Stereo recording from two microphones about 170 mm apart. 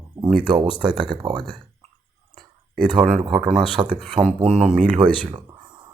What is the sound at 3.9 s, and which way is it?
Speech, 5° right (ahead or behind).